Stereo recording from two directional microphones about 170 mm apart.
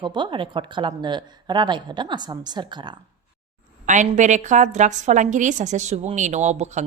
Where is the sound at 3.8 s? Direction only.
45° right (ahead or behind).